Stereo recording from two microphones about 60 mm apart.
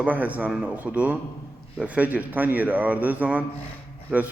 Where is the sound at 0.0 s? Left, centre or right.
Right.